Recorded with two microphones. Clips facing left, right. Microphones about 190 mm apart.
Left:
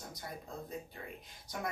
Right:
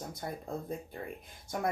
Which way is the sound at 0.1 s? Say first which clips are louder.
Right 7 dB; 50° right (ahead or behind).